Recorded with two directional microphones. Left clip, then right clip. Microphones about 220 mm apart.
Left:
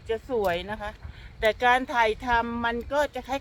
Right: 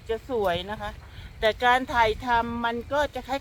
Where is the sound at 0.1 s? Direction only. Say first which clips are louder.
Even; centre (ahead or behind).